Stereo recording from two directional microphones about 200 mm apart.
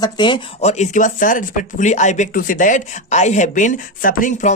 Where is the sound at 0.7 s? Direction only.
35° left (ahead or behind).